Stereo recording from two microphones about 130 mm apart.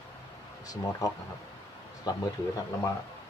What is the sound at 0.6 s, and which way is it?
Speech, 25° left (ahead or behind).